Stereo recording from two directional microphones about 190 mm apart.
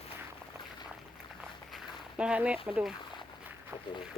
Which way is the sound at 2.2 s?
5° right (ahead or behind).